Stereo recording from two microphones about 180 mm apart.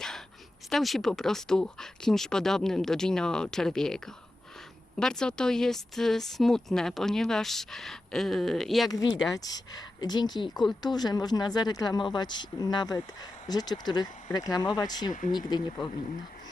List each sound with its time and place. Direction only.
0.7 s speech: centre (ahead or behind)
8.9 s speech: 20° left (ahead or behind)